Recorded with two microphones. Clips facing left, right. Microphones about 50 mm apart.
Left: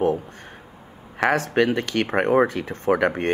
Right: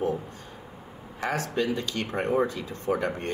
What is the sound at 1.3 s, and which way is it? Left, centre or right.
Speech, left.